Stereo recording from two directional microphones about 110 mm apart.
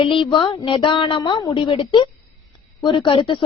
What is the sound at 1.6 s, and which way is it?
Speech, 60° left (ahead or behind).